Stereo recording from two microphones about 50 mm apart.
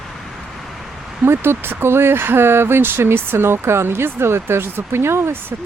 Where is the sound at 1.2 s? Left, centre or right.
Right.